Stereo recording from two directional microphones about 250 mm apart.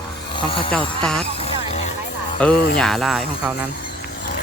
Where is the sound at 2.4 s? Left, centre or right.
Centre.